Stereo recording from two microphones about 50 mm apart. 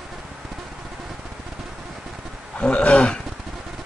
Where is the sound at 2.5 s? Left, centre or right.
Left.